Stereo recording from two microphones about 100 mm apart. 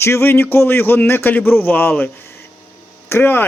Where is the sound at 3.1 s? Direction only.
20° left (ahead or behind).